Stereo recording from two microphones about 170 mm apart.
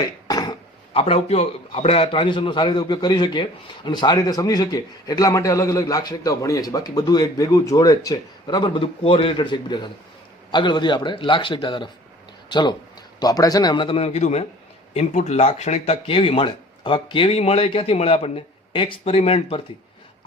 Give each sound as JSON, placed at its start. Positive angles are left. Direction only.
{"t": 0.3, "sound": "cough", "side_deg": 25}
{"t": 0.9, "sound": "a man's voice", "side_deg": 35}